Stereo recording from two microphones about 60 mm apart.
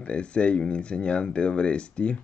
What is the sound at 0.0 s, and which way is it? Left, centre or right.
Speech, centre.